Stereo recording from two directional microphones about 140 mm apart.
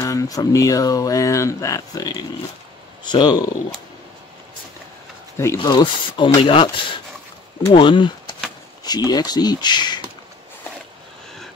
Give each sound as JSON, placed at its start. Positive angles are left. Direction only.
{"t": 0.0, "sound": "speech", "side_deg": 25}
{"t": 5.4, "sound": "speech", "side_deg": 20}
{"t": 5.7, "sound": "speech", "side_deg": 35}
{"t": 7.7, "sound": "speech", "side_deg": 35}